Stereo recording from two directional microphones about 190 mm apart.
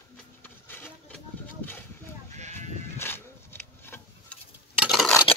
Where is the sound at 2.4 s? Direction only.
40° right (ahead or behind).